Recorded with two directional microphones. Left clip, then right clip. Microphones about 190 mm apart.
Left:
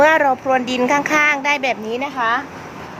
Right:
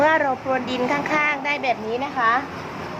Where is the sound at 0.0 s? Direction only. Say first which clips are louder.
Left 5 dB; 65° left (ahead or behind).